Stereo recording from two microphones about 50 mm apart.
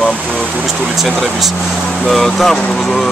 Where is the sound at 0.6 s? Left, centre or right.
Centre.